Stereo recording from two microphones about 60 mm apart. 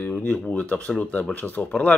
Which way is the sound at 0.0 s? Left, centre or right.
Left.